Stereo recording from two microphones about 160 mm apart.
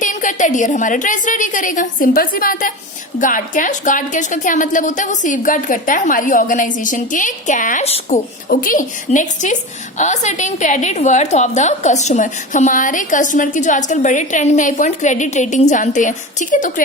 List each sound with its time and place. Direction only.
0.0 s a woman's voice: 55° left (ahead or behind)
7.9 s a woman's voice: 40° left (ahead or behind)
8.4 s a woman's voice: 60° left (ahead or behind)